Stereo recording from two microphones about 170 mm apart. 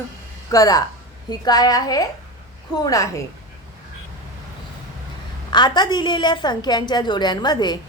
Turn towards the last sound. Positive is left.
turn(degrees=25)  # may be behind; listen again after turning